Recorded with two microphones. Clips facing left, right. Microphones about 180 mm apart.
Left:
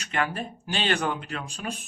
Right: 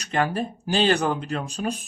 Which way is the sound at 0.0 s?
35° right (ahead or behind).